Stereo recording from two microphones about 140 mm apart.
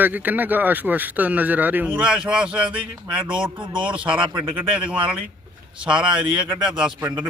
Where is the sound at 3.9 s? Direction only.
10° right (ahead or behind).